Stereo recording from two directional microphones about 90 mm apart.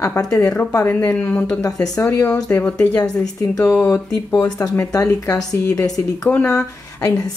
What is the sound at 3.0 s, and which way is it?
Speech, 40° left (ahead or behind).